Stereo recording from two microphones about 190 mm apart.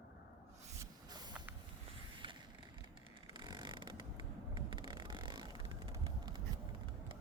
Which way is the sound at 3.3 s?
25° right (ahead or behind).